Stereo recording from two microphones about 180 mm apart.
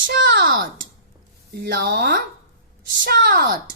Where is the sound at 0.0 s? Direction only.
50° right (ahead or behind).